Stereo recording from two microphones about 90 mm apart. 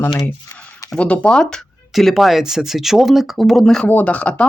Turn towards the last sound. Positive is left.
turn(degrees=15)  # may be behind; listen again after turning